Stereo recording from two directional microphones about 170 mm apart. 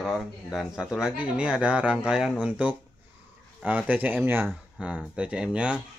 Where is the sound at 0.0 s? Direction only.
Centre (ahead or behind).